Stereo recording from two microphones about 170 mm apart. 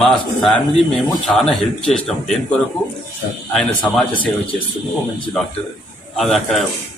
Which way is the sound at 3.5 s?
5° left (ahead or behind).